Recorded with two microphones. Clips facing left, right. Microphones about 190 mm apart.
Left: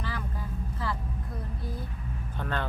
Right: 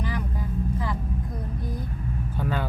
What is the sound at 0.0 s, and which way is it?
Vehicle, 15° right (ahead or behind).